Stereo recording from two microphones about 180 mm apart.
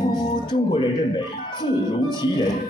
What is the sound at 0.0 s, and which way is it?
Speech, 25° left (ahead or behind).